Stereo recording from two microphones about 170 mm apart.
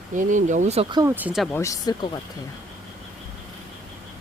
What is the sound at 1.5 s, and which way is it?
Speech, 20° left (ahead or behind).